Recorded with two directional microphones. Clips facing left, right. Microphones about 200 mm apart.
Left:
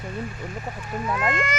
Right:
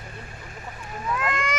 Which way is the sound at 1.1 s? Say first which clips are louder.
Left 1 dB; centre (ahead or behind).